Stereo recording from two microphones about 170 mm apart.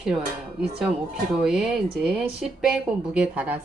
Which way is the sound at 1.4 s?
5° right (ahead or behind).